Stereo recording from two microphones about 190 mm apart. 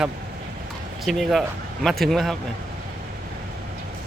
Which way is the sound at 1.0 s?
Centre (ahead or behind).